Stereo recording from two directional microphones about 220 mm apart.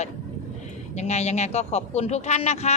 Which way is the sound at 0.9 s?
30° left (ahead or behind).